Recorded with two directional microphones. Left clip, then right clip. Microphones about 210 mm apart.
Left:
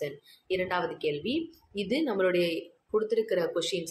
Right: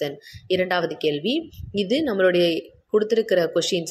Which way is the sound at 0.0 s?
25° right (ahead or behind).